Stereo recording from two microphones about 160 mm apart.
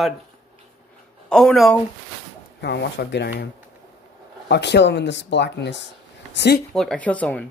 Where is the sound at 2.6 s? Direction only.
90° left.